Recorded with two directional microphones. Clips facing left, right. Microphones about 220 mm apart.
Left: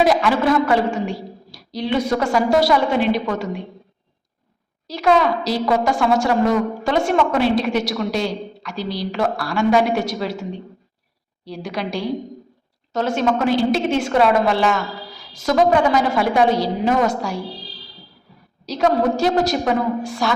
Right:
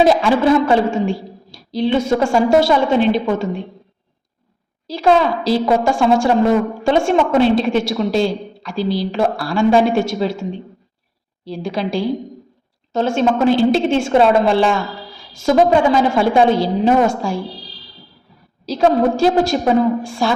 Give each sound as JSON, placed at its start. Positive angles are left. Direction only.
{"t": 0.0, "sound": "a woman's voice", "side_deg": -25}
{"t": 4.9, "sound": "a woman's voice", "side_deg": -30}
{"t": 11.4, "sound": "a woman's voice", "side_deg": -30}
{"t": 18.6, "sound": "a woman's voice", "side_deg": -30}